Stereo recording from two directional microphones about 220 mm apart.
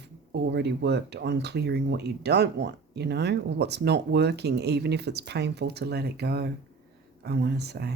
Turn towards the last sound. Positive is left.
turn(degrees=-45)  # may be behind; listen again after turning